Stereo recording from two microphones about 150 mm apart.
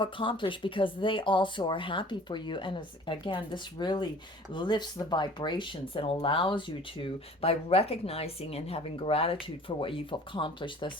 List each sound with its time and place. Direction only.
0.0 s speech: 35° left (ahead or behind)